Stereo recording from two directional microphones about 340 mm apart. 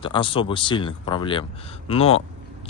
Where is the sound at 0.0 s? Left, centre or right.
Centre.